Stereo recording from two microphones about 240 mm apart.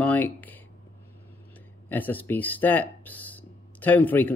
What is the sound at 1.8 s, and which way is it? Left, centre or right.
Speech, centre.